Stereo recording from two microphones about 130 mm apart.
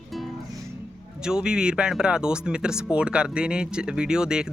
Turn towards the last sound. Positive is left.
turn(degrees=-5)  # may be behind; listen again after turning